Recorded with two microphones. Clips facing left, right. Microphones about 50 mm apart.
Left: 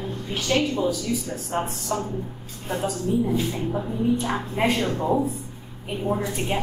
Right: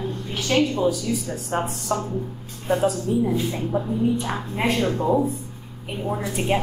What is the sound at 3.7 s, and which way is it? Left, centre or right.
Speech, centre.